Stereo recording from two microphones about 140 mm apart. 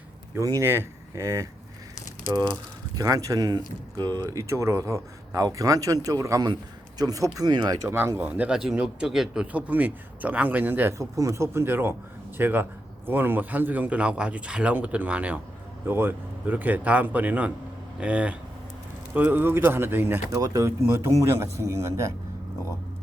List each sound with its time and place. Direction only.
0.3 s speech: 20° right (ahead or behind)
2.9 s speech: 25° right (ahead or behind)